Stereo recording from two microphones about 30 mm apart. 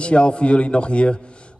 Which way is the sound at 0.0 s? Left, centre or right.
Left.